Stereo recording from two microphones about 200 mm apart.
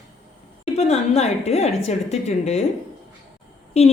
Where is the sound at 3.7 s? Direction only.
30° left (ahead or behind).